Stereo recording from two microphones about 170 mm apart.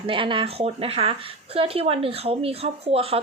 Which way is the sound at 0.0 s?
30° right (ahead or behind).